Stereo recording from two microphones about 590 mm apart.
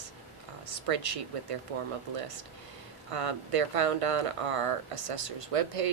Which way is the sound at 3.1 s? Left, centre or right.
Right.